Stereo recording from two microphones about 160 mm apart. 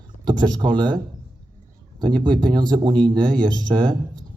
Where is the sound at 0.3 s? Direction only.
25° right (ahead or behind).